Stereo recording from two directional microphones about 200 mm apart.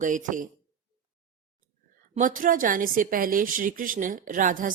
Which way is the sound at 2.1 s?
40° right (ahead or behind).